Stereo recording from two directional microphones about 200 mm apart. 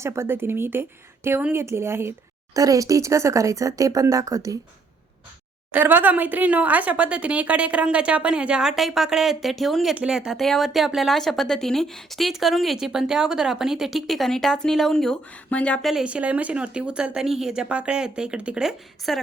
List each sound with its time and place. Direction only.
0.0 s a woman's voice: 15° right (ahead or behind)
5.7 s a woman's voice: 10° right (ahead or behind)